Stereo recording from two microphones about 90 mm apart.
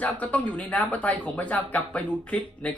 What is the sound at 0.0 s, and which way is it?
Speech, 15° left (ahead or behind).